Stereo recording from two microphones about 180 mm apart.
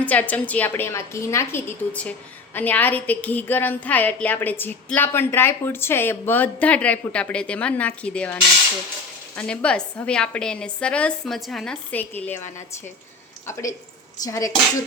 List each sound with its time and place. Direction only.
0.0 s a woman's voice: 10° left (ahead or behind)